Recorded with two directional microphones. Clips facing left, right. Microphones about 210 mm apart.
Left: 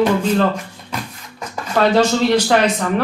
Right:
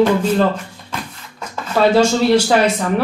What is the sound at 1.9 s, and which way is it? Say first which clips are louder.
Speech: right 2 dB; 10° right (ahead or behind).